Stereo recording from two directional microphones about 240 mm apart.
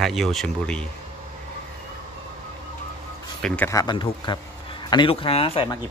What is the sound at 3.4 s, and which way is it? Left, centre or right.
Speech, centre.